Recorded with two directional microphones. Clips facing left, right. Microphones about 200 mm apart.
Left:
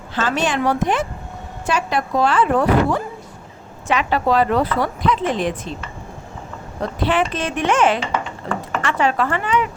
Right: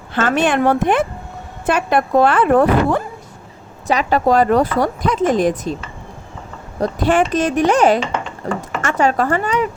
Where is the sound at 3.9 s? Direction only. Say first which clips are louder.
Right 3 dB; 40° right (ahead or behind).